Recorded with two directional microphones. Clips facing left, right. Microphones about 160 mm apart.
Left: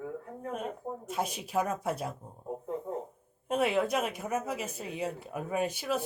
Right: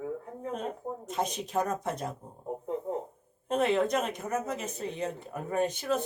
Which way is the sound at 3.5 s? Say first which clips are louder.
Right 2 dB; 5° left (ahead or behind).